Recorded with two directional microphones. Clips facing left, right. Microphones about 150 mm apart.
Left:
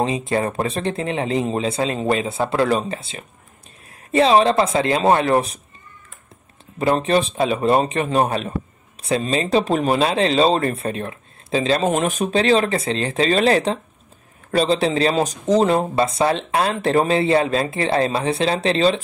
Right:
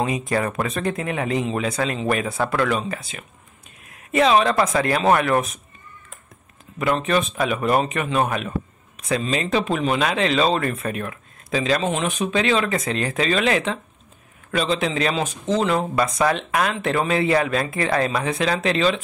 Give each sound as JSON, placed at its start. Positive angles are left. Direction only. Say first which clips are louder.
{"t": 0.0, "sound": "speech", "louder": "left 2 dB", "side_deg": 25}
{"t": 6.8, "sound": "speech", "louder": "left 3 dB", "side_deg": 30}
{"t": 11.9, "sound": "speech", "louder": "left 3 dB", "side_deg": 45}